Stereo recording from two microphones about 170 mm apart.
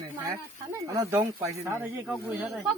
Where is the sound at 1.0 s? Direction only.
15° right (ahead or behind).